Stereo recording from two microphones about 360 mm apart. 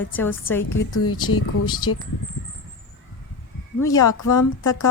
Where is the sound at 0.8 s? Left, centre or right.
Left.